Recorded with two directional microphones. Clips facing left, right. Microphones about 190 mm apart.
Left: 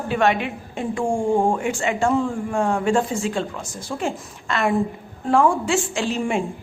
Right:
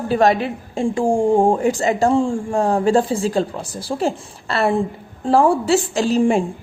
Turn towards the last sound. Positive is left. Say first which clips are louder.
# right 7 dB
turn(degrees=-35)  # may be behind; listen again after turning